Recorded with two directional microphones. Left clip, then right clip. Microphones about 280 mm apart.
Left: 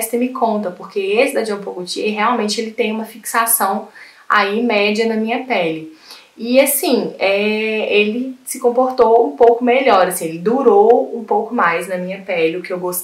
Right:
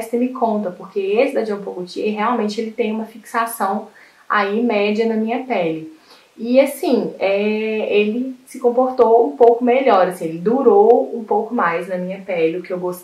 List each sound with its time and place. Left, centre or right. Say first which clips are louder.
0.0 s a woman's voice: left 2 dB; centre
1.6 s speech: left 1 dB; centre
2.0 s a woman's voice: left 2 dB; centre